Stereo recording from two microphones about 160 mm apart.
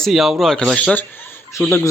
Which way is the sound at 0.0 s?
Centre (ahead or behind).